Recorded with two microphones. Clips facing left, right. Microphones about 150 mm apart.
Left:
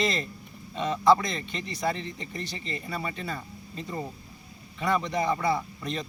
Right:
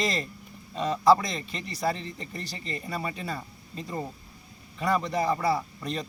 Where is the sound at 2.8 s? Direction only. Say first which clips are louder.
Right 1 dB; 5° right (ahead or behind).